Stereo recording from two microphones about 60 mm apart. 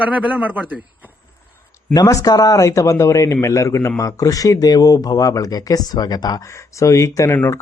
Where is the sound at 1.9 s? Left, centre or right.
Left.